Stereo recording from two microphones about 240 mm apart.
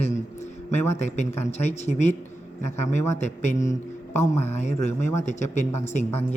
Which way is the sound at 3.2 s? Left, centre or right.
Left.